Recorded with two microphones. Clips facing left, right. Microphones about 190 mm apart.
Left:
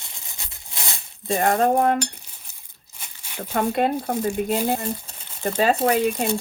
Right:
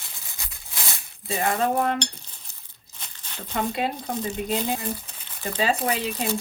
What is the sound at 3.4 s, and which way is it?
Speech, 50° left (ahead or behind).